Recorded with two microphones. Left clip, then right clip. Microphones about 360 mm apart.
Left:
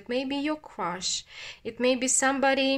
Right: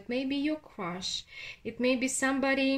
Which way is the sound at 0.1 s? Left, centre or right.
Centre.